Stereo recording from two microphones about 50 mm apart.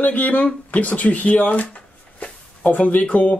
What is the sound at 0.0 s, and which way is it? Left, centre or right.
Speech, left.